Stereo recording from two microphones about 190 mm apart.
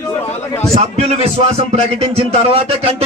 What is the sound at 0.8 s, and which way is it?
A man's voice, 35° right (ahead or behind).